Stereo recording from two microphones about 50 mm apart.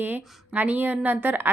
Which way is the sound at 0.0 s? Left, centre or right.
Right.